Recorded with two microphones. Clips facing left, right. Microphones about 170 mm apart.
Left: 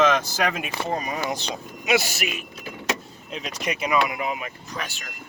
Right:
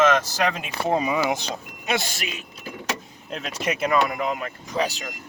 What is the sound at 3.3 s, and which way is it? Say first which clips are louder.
Speech: right 2 dB; centre (ahead or behind).